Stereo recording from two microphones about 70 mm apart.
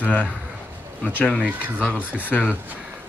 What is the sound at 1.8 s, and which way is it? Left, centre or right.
Speech, left.